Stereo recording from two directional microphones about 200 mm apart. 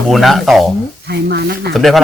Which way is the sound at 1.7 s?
Centre (ahead or behind).